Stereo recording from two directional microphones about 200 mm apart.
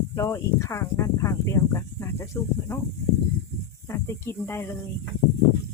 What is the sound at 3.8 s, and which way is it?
Speech, 15° left (ahead or behind).